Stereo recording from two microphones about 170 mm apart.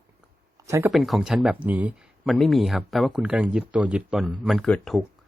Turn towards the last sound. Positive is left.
turn(degrees=0)  # may be behind; listen again after turning